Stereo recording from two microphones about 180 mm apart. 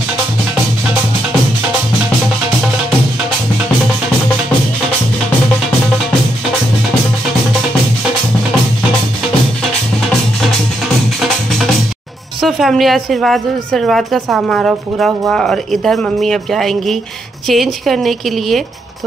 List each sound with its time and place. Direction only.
12.4 s a woman's voice: centre (ahead or behind)